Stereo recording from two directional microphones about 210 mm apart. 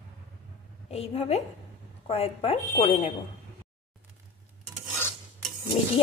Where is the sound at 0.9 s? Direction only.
30° left (ahead or behind).